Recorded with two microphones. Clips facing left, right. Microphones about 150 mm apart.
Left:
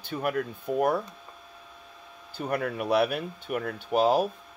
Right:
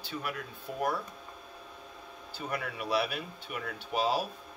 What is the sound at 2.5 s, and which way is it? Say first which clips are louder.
Speech: left 7 dB; 50° left (ahead or behind).